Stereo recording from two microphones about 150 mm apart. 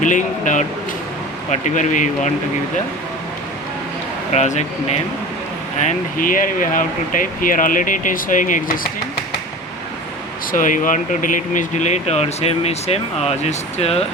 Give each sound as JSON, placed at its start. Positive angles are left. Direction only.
{"t": 0.0, "sound": "speech", "side_deg": 55}
{"t": 4.3, "sound": "speech", "side_deg": 50}
{"t": 10.5, "sound": "speech", "side_deg": 60}